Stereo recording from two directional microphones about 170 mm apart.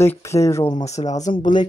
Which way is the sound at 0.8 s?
40° left (ahead or behind).